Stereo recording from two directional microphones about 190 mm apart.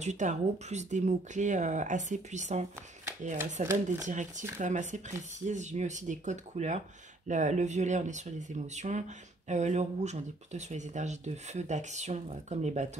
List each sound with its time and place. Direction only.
0.0 s speech: 40° right (ahead or behind)